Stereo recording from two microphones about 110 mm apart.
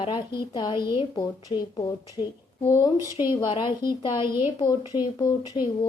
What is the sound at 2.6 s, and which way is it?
Speech, 30° left (ahead or behind).